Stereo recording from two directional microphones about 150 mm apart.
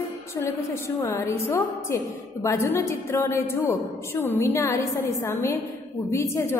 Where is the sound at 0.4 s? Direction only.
20° left (ahead or behind).